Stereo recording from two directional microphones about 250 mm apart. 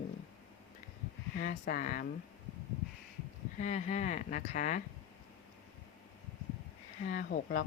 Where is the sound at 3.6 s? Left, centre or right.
Left.